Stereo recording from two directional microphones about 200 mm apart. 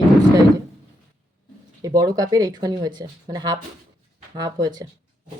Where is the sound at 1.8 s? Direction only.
20° right (ahead or behind).